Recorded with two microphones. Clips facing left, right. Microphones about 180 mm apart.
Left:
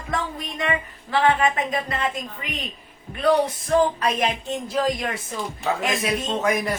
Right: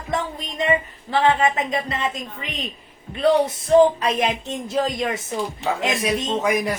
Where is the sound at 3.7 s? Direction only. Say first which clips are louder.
Right 5 dB; 30° right (ahead or behind).